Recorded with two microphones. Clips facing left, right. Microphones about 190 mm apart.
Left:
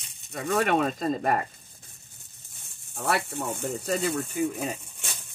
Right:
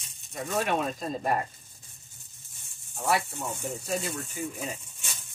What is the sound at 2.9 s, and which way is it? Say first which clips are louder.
Speech: even; 60° left (ahead or behind).